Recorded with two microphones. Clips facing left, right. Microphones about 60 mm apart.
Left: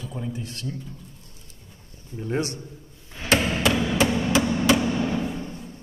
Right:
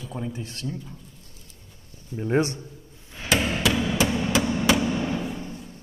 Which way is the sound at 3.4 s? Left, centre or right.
Centre.